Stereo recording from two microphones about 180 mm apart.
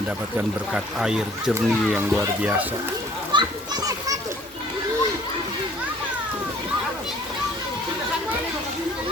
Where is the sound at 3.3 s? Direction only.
25° right (ahead or behind).